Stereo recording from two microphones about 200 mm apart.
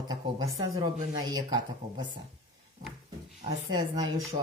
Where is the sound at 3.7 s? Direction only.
20° right (ahead or behind).